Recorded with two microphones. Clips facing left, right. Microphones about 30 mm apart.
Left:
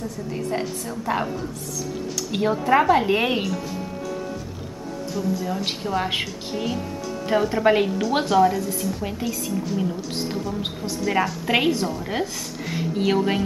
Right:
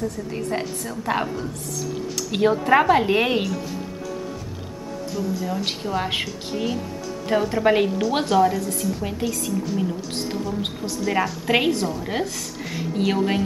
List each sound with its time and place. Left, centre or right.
0.3 s a woman's voice: centre
2.1 s a sound: centre
2.8 s a woman's voice: centre
5.1 s a woman's voice: centre